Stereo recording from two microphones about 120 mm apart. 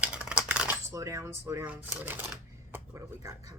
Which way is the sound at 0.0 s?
10° right (ahead or behind).